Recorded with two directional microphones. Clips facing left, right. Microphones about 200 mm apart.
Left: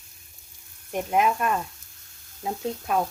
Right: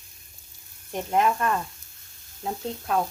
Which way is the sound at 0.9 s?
10° left (ahead or behind).